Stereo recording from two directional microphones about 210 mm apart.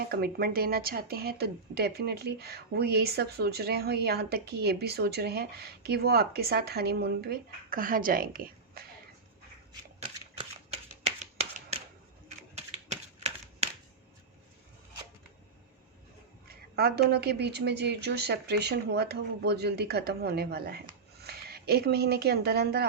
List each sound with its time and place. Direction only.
0.0 s speech: 45° right (ahead or behind)
10.0 s shuffling cards: 30° right (ahead or behind)
12.5 s a sound: 30° right (ahead or behind)
16.5 s speech: 50° right (ahead or behind)